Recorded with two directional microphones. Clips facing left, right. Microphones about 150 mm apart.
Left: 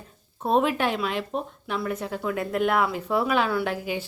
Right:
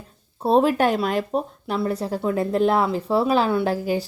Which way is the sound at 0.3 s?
30° right (ahead or behind).